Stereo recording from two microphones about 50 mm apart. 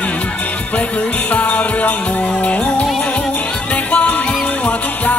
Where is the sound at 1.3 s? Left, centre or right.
Left.